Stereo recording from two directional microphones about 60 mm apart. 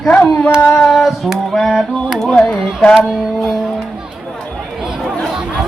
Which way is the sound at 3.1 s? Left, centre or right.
Centre.